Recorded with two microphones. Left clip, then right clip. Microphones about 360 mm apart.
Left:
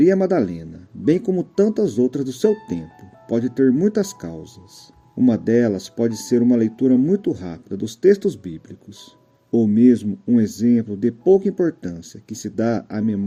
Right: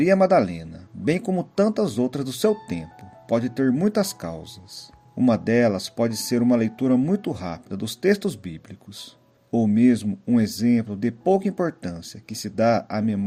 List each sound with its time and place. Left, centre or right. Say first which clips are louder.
0.0 s speech: left 1 dB; right